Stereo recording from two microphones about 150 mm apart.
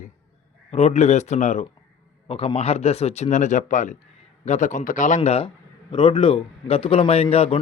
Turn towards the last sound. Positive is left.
turn(degrees=40)  # may be behind; listen again after turning